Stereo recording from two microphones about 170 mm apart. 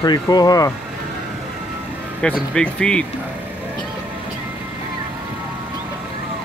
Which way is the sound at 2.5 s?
5° left (ahead or behind).